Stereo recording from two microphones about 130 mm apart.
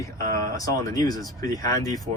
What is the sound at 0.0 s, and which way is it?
Speech, 25° left (ahead or behind).